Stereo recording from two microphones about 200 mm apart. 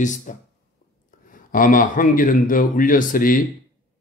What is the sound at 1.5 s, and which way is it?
Speech, 45° left (ahead or behind).